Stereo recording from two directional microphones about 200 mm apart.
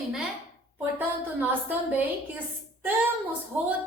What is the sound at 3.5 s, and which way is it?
Speech, 10° right (ahead or behind).